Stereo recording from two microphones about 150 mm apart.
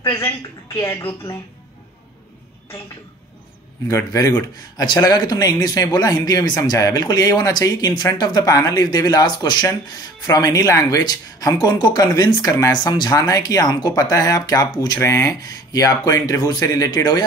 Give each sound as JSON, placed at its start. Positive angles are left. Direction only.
{"t": 0.7, "sound": "speech", "side_deg": 15}
{"t": 3.9, "sound": "a man's voice", "side_deg": 25}